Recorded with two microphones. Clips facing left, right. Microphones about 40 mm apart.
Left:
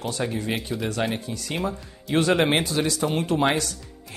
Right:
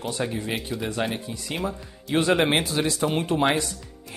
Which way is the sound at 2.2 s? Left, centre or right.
Centre.